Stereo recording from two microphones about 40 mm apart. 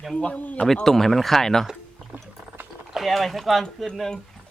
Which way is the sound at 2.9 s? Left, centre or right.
Centre.